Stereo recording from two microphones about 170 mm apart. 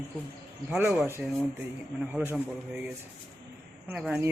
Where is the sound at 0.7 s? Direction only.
10° right (ahead or behind).